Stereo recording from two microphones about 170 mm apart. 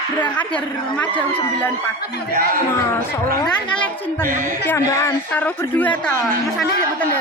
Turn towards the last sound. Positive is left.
turn(degrees=5)  # may be behind; listen again after turning